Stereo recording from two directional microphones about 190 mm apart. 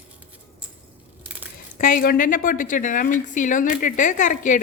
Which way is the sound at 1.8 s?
45° left (ahead or behind).